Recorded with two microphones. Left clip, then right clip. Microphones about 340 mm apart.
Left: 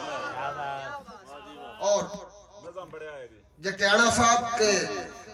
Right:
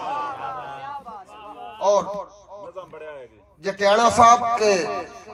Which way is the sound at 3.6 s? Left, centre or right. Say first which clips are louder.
Right 5 dB; centre.